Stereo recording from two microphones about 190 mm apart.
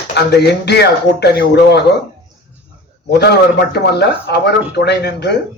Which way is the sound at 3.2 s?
60° left (ahead or behind).